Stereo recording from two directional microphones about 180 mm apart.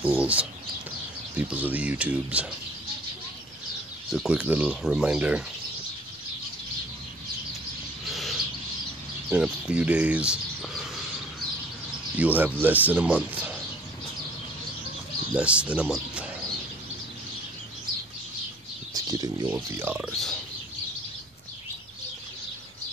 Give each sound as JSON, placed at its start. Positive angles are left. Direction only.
{"t": 0.0, "sound": "speech", "side_deg": -5}
{"t": 4.1, "sound": "speech", "side_deg": -5}
{"t": 8.1, "sound": "bird", "side_deg": 0}
{"t": 9.3, "sound": "speech", "side_deg": -5}
{"t": 12.2, "sound": "speech", "side_deg": -10}
{"t": 15.3, "sound": "speech", "side_deg": -5}
{"t": 18.9, "sound": "speech", "side_deg": -20}
{"t": 20.0, "sound": "speech", "side_deg": 0}